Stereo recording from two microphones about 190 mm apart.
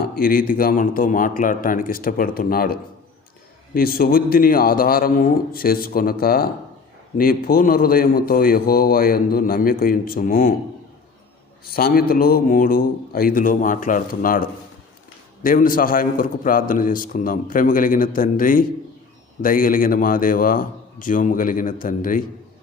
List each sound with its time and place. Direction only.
0.2 s a man's voice: 50° left (ahead or behind)
3.8 s a man's voice: 50° left (ahead or behind)
11.6 s a man's voice: 50° left (ahead or behind)